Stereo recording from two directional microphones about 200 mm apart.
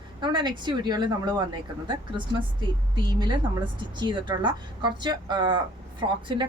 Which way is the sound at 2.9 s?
20° right (ahead or behind).